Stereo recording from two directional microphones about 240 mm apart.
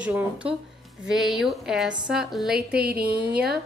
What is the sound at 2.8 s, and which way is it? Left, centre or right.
Speech, right.